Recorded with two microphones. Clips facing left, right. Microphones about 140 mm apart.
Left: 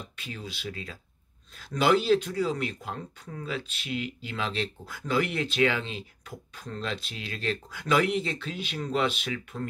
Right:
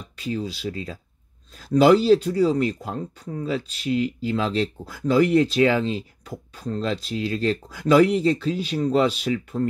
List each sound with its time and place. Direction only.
0.1 s speech: 35° right (ahead or behind)